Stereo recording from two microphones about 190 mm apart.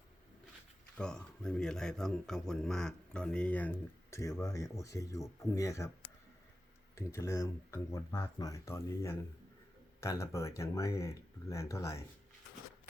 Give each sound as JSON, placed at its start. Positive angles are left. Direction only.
{"t": 0.9, "sound": "speech", "side_deg": 5}
{"t": 6.9, "sound": "speech", "side_deg": 15}